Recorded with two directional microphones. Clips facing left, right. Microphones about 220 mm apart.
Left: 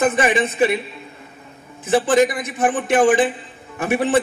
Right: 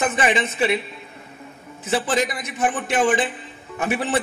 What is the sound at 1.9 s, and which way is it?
A man's voice, 50° left (ahead or behind).